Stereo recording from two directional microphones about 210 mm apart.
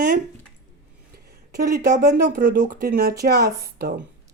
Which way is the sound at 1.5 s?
50° right (ahead or behind).